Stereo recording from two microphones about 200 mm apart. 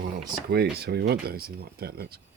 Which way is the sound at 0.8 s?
55° right (ahead or behind).